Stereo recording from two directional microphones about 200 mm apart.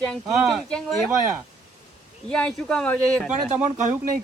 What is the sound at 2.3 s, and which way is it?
A man's voice, 5° left (ahead or behind).